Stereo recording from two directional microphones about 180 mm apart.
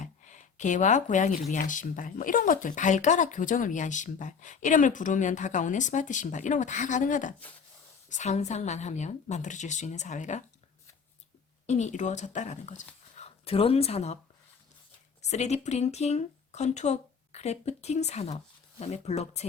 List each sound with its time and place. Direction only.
0.0 s speech: 40° left (ahead or behind)
11.6 s speech: 40° left (ahead or behind)
15.3 s speech: 40° left (ahead or behind)